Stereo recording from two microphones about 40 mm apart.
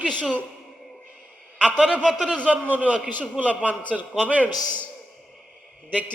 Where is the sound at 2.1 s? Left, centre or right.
Right.